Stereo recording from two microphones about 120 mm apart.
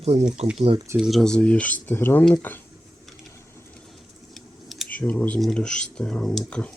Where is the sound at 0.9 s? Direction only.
Centre (ahead or behind); by 2.6 s 15° left (ahead or behind).